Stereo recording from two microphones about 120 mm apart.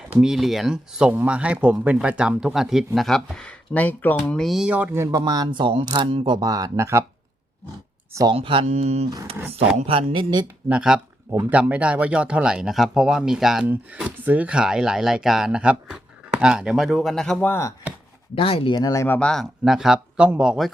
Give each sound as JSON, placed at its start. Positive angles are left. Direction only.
{"t": 0.1, "sound": "speech", "side_deg": -5}
{"t": 4.3, "sound": "speech", "side_deg": 0}
{"t": 5.1, "sound": "speech", "side_deg": -30}
{"t": 8.3, "sound": "speech", "side_deg": -50}
{"t": 8.6, "sound": "speech", "side_deg": -75}
{"t": 9.8, "sound": "speech", "side_deg": -50}
{"t": 10.7, "sound": "speech", "side_deg": -10}
{"t": 17.5, "sound": "chopping", "side_deg": 25}
{"t": 18.3, "sound": "speech", "side_deg": 50}
{"t": 18.7, "sound": "speech", "side_deg": 30}
{"t": 19.0, "sound": "speech", "side_deg": 15}
{"t": 19.3, "sound": "speech", "side_deg": 0}